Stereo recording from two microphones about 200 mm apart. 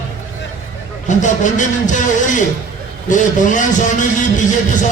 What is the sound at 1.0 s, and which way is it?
A man's voice, 40° left (ahead or behind).